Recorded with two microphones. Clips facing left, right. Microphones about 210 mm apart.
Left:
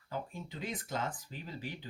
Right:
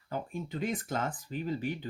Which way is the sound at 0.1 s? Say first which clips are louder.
Right 5 dB; 50° right (ahead or behind).